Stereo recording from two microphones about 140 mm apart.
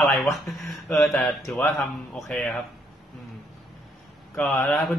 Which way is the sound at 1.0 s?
Centre (ahead or behind).